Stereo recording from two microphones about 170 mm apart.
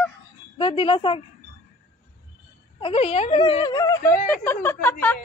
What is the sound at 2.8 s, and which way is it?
Speech, 35° left (ahead or behind).